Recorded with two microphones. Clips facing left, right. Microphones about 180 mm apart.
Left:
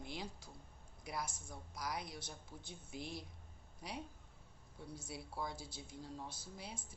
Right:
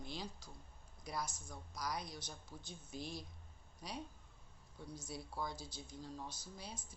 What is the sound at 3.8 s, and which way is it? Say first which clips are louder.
Speech: even; 25° left (ahead or behind).